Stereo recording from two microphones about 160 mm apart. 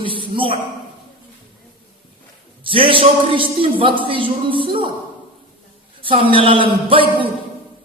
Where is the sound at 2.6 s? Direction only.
35° right (ahead or behind).